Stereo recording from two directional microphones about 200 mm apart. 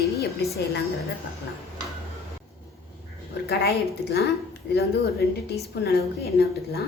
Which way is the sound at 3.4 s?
50° left (ahead or behind).